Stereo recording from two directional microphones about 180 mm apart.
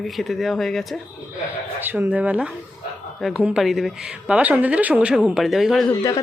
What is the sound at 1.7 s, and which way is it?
A woman's voice, 10° right (ahead or behind).